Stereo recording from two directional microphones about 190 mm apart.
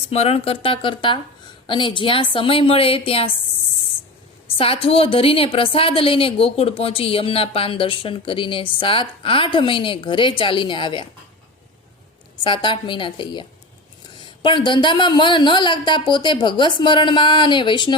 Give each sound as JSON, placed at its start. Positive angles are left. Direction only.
{"t": 0.1, "sound": "a woman's voice", "side_deg": 35}
{"t": 4.5, "sound": "a woman's voice", "side_deg": 30}
{"t": 12.4, "sound": "a woman's voice", "side_deg": 25}
{"t": 14.4, "sound": "a woman's voice", "side_deg": 25}